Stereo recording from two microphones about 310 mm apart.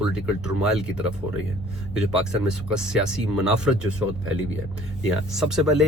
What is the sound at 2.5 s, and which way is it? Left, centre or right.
Speech, centre.